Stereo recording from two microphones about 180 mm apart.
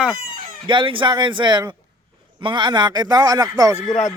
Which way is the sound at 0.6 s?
25° right (ahead or behind).